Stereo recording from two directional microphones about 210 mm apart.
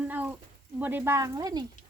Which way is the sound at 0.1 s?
5° right (ahead or behind).